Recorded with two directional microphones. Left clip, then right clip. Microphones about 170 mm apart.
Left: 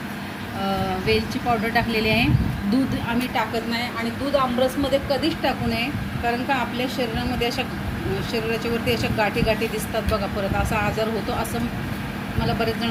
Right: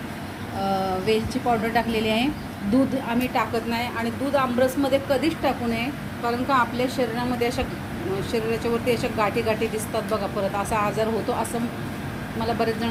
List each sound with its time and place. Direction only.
0.6 s a woman's voice: 5° right (ahead or behind)
4.4 s a woman's voice: 20° right (ahead or behind)
5.4 s a woman's voice: 5° right (ahead or behind)
12.5 s speech: 5° right (ahead or behind)